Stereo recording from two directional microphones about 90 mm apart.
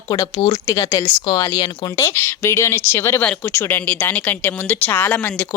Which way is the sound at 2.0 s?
25° left (ahead or behind).